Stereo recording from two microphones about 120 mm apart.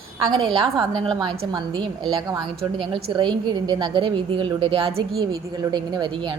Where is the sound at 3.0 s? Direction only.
40° right (ahead or behind).